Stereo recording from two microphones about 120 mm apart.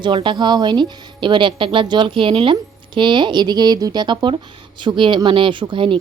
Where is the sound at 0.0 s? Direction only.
45° right (ahead or behind).